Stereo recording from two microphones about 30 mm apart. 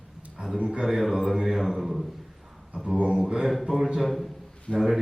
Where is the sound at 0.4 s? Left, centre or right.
Right.